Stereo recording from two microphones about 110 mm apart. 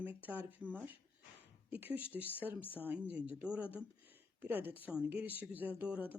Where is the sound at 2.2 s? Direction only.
20° left (ahead or behind).